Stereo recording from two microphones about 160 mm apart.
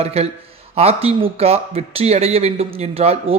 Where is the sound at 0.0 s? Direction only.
40° right (ahead or behind).